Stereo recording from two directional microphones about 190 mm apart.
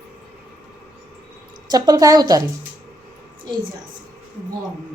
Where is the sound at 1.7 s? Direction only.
20° right (ahead or behind).